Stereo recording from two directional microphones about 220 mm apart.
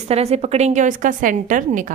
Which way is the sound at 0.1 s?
30° right (ahead or behind).